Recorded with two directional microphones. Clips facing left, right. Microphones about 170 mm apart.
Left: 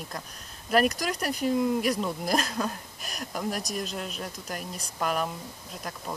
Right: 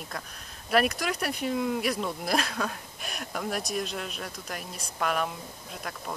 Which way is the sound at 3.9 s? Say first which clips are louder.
Left 1 dB; centre (ahead or behind).